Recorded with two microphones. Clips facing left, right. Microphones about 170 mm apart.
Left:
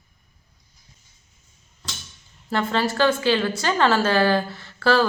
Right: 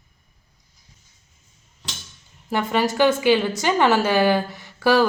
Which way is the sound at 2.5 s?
15° right (ahead or behind).